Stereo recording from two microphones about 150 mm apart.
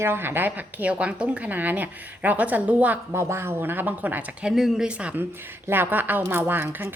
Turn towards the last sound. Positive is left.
turn(degrees=-15)  # may be behind; listen again after turning